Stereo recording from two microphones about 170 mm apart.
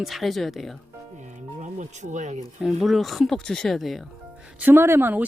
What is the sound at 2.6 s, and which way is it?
Speech, centre (ahead or behind).